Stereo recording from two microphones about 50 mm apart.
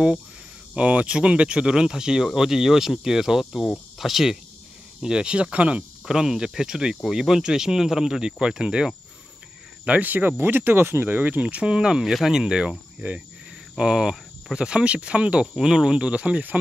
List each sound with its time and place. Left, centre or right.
0.7 s speech: right; by 4.4 s centre
5.0 s speech: centre
6.0 s speech: centre
9.8 s speech: right
11.1 s speech: right; by 12.4 s centre
12.4 s speech: centre
13.7 s speech: centre
15.4 s speech: centre